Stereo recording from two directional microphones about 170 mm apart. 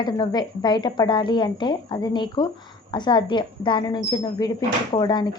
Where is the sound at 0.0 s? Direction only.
25° left (ahead or behind).